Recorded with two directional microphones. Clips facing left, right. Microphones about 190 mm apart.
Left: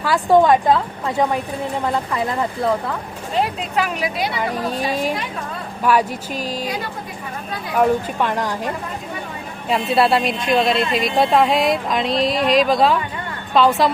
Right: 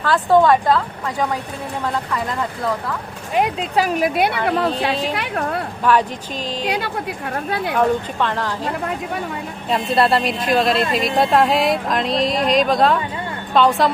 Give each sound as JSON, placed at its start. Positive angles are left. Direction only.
{"t": 0.0, "sound": "a woman's voice", "side_deg": 10}
{"t": 3.8, "sound": "a woman's voice", "side_deg": -40}
{"t": 4.4, "sound": "a woman's voice", "side_deg": -70}
{"t": 5.8, "sound": "speech", "side_deg": 10}
{"t": 6.7, "sound": "a woman's voice", "side_deg": -70}
{"t": 7.8, "sound": "speech", "side_deg": 10}
{"t": 9.6, "sound": "speech", "side_deg": 0}